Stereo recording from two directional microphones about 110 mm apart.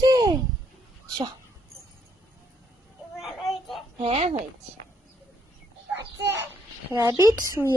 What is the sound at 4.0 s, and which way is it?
Speech, 75° right (ahead or behind).